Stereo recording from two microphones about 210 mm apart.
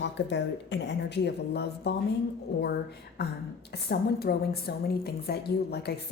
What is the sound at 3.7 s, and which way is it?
A woman's voice, 50° left (ahead or behind).